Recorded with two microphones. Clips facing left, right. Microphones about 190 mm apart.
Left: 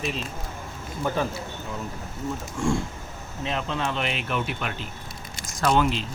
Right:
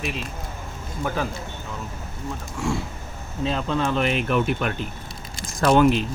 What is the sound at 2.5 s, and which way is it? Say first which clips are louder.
Speech: left 1 dB; centre (ahead or behind).